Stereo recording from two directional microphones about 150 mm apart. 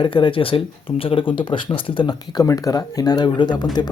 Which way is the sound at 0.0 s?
35° left (ahead or behind).